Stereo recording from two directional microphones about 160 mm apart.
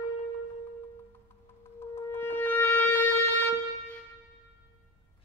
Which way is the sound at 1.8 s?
15° left (ahead or behind).